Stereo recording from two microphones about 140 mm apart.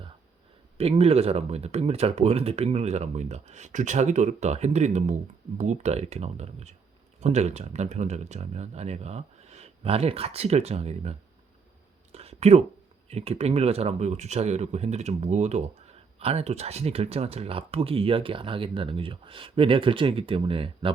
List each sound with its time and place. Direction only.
0.8 s speech: 45° right (ahead or behind)
12.1 s a sound: 45° right (ahead or behind)
13.1 s speech: 50° right (ahead or behind)